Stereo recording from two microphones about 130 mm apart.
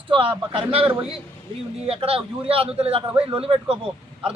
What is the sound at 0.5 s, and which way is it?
A man's voice, 45° right (ahead or behind).